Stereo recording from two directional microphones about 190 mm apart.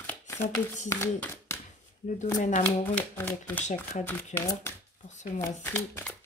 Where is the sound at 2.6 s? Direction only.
10° left (ahead or behind).